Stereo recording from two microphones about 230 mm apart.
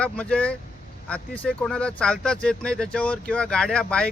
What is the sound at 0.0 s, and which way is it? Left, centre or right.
Speech, centre.